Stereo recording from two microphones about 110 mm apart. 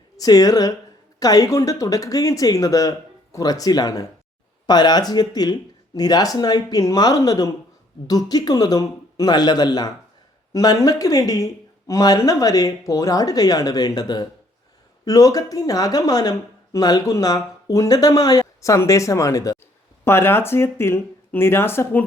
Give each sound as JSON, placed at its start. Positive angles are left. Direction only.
{"t": 0.2, "sound": "speech", "side_deg": 35}